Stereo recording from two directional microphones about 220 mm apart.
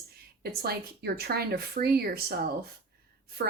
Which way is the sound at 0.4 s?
45° right (ahead or behind).